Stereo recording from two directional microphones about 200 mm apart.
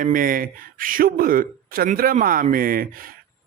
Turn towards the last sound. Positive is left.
turn(degrees=-45)  # may be behind; listen again after turning